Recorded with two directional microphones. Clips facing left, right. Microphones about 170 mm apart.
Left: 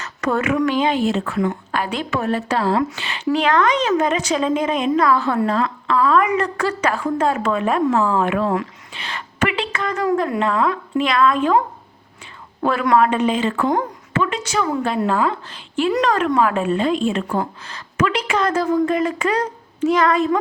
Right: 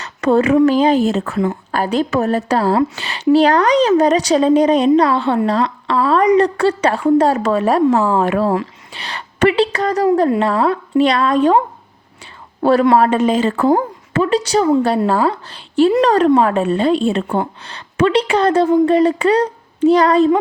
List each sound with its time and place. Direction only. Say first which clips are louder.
0.0 s a woman's voice: right 7 dB; 30° right (ahead or behind)
12.6 s a woman's voice: right 5 dB; 30° right (ahead or behind)